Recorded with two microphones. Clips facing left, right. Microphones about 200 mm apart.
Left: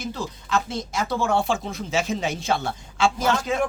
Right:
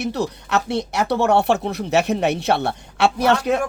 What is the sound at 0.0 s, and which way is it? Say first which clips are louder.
Speech: right 7 dB; 70° right (ahead or behind).